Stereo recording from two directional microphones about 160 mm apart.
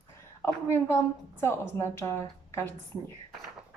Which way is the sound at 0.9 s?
15° left (ahead or behind).